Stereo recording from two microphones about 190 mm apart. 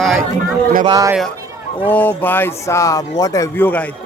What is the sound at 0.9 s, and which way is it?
Speech, 20° right (ahead or behind).